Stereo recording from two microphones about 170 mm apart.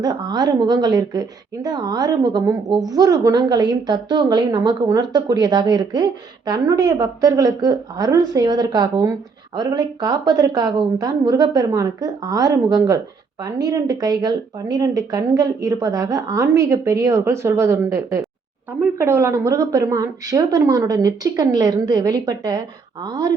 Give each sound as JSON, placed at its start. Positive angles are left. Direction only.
{"t": 0.0, "sound": "a woman's voice", "side_deg": -25}